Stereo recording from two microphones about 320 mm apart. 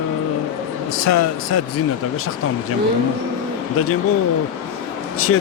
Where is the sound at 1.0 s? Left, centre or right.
Left.